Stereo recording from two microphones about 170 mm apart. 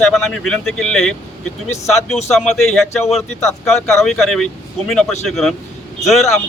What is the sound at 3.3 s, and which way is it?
Speech, 15° left (ahead or behind).